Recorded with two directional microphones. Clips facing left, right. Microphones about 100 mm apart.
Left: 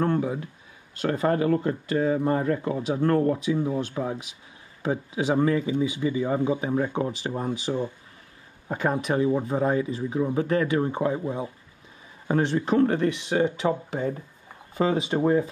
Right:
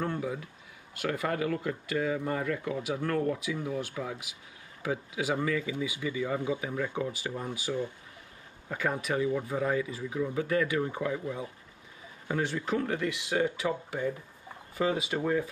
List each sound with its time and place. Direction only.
0.2 s speech: 30° left (ahead or behind)
3.3 s speech: 25° left (ahead or behind)
12.7 s speech: 45° left (ahead or behind)
13.3 s speech: 25° left (ahead or behind)